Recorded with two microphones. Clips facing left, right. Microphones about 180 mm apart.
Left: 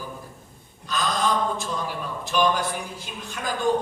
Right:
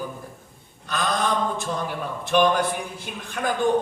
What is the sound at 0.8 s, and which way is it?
A man's voice, 60° right (ahead or behind).